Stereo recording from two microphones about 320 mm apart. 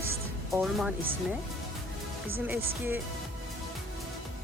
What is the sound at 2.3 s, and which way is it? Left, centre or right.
Speech, centre.